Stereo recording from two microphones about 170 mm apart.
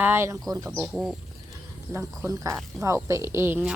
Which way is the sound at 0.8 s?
5° right (ahead or behind).